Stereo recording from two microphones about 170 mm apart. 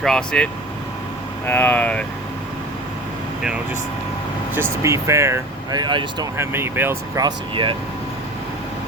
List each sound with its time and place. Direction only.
0.0 s speech: 5° left (ahead or behind)
1.5 s speech: 10° left (ahead or behind)
4.5 s speech: 15° right (ahead or behind)
6.3 s speech: 15° right (ahead or behind)
7.3 s speech: 30° right (ahead or behind)